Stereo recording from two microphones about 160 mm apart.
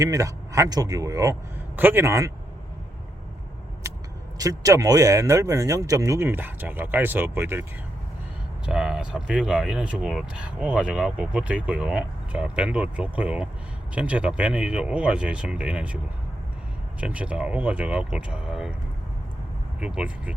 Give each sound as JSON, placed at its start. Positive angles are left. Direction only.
{"t": 0.0, "sound": "speech", "side_deg": -20}
{"t": 4.4, "sound": "speech", "side_deg": -20}
{"t": 8.6, "sound": "speech", "side_deg": -5}
{"t": 17.0, "sound": "speech", "side_deg": -10}
{"t": 19.8, "sound": "speech", "side_deg": -5}